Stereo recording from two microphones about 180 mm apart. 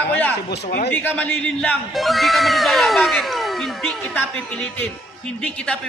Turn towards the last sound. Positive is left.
turn(degrees=5)  # may be behind; listen again after turning